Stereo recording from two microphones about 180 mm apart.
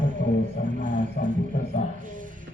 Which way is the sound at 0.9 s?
50° left (ahead or behind).